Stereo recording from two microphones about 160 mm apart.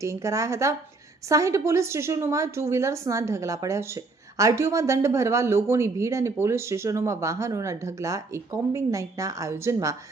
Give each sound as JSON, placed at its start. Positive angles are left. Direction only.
{"t": 0.0, "sound": "a woman's voice", "side_deg": -20}